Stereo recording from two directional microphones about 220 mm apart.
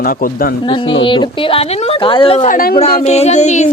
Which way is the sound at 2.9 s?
30° left (ahead or behind).